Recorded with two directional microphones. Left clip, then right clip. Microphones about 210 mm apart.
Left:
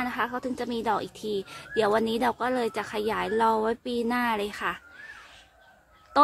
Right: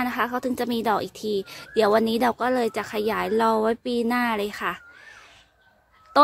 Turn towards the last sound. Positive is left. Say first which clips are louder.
# right 2 dB
turn(degrees=-30)  # may be behind; listen again after turning